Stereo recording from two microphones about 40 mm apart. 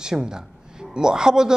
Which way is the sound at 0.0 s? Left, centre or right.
Centre.